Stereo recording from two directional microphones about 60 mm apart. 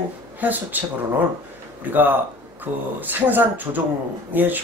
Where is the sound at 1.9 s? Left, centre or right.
Right.